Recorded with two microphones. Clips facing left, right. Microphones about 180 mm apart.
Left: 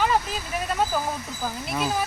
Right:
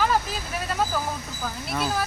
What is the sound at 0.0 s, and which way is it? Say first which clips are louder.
Vehicle: even; centre (ahead or behind).